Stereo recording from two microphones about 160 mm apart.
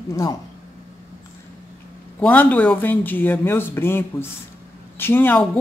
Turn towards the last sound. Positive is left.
turn(degrees=10)  # may be behind; listen again after turning